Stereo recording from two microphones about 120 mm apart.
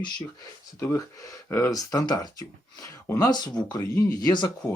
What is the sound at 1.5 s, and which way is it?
Speech, 25° left (ahead or behind).